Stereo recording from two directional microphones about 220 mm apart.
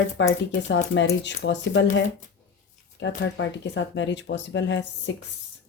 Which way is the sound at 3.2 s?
55° left (ahead or behind).